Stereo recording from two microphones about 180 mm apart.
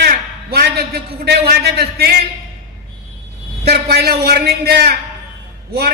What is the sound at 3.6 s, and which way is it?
A man's voice, 60° right (ahead or behind).